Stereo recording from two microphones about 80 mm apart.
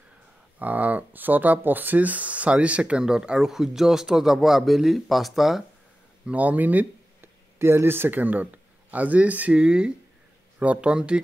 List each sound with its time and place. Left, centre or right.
0.6 s speech: centre
6.2 s speech: centre